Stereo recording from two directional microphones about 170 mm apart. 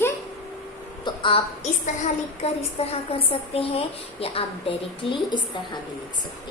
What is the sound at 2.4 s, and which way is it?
Speech, 40° left (ahead or behind).